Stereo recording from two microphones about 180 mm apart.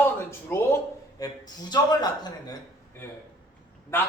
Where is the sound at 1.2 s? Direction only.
20° left (ahead or behind).